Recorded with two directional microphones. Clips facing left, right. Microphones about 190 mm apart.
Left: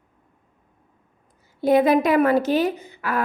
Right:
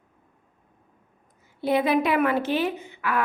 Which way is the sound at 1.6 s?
45° left (ahead or behind).